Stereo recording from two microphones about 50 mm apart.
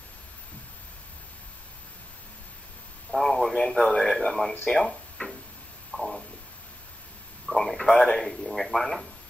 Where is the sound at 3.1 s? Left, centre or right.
Centre.